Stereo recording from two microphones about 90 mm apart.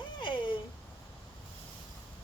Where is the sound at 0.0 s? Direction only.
60° left (ahead or behind).